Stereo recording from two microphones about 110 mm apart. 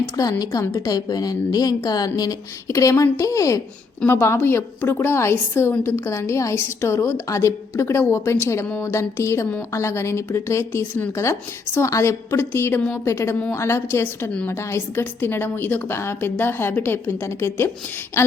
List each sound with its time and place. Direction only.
0.2 s a woman's voice: 35° left (ahead or behind)